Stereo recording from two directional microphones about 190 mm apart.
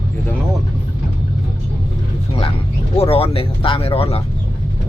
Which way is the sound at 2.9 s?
30° left (ahead or behind).